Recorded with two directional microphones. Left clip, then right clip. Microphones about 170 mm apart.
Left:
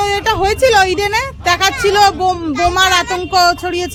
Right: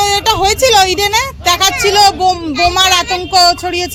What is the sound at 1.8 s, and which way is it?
Speech, 20° left (ahead or behind).